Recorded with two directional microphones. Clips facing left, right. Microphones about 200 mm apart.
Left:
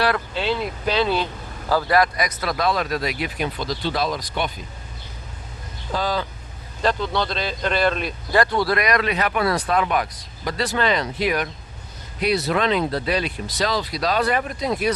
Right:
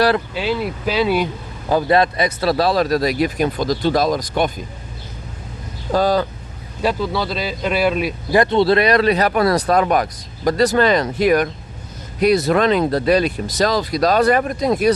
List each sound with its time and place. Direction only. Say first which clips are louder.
0.3 s speech: right 3 dB; 5° right (ahead or behind)
1.7 s speech: right 4 dB; 25° right (ahead or behind); by 4.5 s 45° right (ahead or behind)
5.9 s speech: right 8 dB; 45° right (ahead or behind)
6.8 s speech: right 2 dB; 5° right (ahead or behind)
8.4 s speech: right 6 dB; 25° right (ahead or behind); by 14.9 s 45° right (ahead or behind)